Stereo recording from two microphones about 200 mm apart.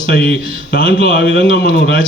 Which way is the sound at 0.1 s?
50° left (ahead or behind).